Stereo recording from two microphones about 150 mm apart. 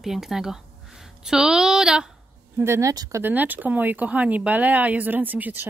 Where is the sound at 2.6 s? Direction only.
20° right (ahead or behind).